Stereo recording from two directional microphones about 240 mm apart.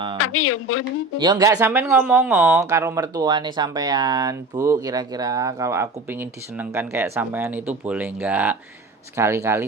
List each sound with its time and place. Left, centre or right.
0.2 s speech: left
1.2 s speech: centre